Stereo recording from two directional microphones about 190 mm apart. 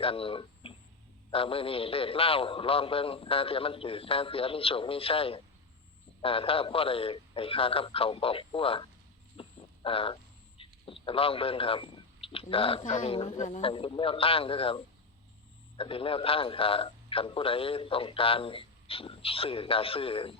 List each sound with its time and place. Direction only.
0.0 s speech: 30° left (ahead or behind)
9.4 s a sound: 30° left (ahead or behind)
10.6 s a man's voice: 30° left (ahead or behind)
15.8 s speech: 30° left (ahead or behind)